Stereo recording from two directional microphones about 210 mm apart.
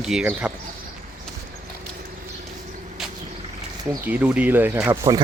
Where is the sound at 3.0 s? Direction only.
Centre (ahead or behind).